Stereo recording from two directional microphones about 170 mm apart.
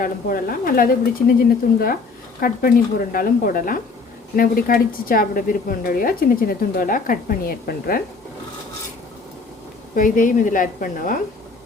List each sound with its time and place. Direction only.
0.0 s a woman's voice: 55° left (ahead or behind)
9.9 s a woman's voice: 50° left (ahead or behind)